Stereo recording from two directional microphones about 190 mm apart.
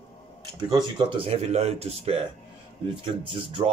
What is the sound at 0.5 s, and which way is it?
Speech, 20° right (ahead or behind).